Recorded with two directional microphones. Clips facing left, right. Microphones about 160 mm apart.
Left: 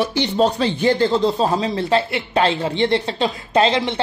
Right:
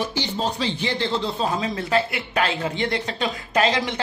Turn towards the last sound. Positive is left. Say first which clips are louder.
# left 4 dB
turn(degrees=30)  # may be behind; listen again after turning